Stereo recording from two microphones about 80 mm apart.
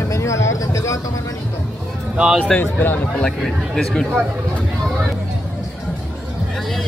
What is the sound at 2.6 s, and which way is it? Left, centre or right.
Speech, left.